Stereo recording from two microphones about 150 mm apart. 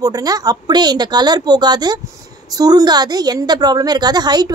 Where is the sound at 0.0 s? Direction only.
25° right (ahead or behind).